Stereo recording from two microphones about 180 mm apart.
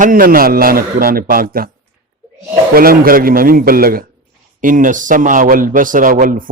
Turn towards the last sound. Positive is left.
turn(degrees=-50)  # may be behind; listen again after turning